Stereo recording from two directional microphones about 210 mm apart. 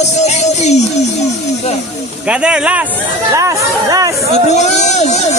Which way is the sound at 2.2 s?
5° right (ahead or behind).